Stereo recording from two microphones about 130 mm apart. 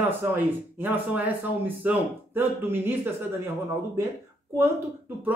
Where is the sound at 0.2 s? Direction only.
15° right (ahead or behind).